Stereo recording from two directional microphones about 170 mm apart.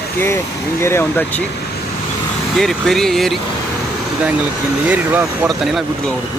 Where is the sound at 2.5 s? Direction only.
Centre (ahead or behind).